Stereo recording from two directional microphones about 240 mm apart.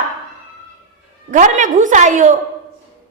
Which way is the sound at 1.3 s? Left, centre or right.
Right.